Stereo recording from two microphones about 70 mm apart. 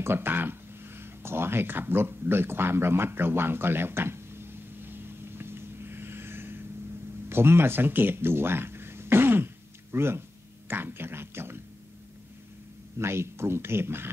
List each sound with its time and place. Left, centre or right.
0.0 s a sound: right
7.2 s speech: right
13.0 s speech: right